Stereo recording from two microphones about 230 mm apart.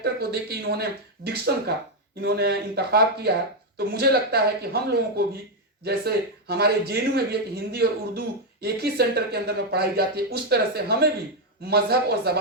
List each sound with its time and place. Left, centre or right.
0.0 s a man's voice: right